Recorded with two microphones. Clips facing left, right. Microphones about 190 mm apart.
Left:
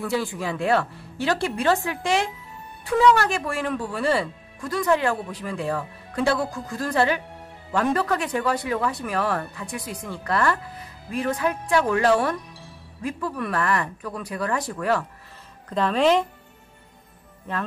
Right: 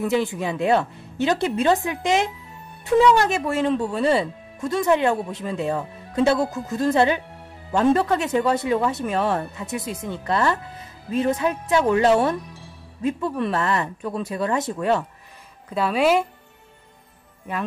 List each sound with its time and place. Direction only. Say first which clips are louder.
0.0 s speech: right 4 dB; 20° right (ahead or behind)
15.7 s speech: even; 10° right (ahead or behind)
17.5 s speech: right 1 dB; 10° right (ahead or behind)